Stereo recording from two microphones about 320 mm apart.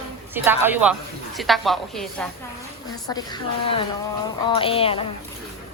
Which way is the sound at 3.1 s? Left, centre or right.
Centre.